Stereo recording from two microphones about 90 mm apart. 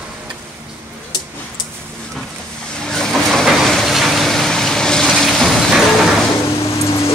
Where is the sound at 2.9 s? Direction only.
5° left (ahead or behind).